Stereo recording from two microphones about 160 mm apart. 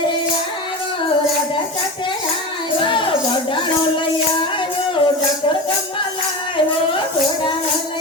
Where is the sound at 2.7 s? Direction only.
30° left (ahead or behind).